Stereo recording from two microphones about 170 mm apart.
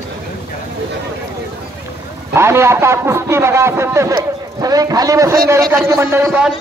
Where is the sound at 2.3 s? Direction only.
15° right (ahead or behind).